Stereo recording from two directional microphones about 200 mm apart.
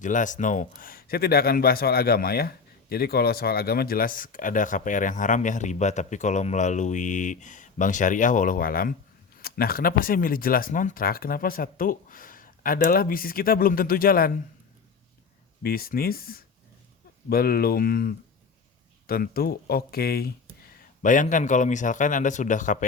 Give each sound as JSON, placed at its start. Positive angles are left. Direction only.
{"t": 0.0, "sound": "a man's voice", "side_deg": 40}
{"t": 15.6, "sound": "a man's voice", "side_deg": 50}